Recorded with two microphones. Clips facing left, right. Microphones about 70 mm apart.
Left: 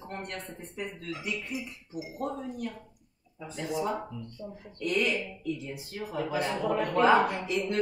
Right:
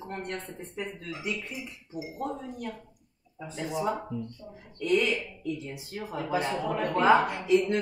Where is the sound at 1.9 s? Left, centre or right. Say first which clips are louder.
Right 1 dB; right.